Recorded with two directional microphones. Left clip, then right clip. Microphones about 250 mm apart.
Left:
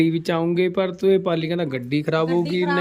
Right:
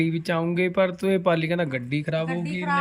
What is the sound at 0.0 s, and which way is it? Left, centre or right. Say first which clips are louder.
A man's voice: left 4 dB; centre.